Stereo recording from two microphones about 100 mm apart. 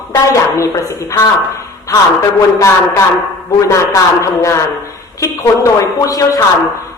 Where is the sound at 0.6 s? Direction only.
30° left (ahead or behind).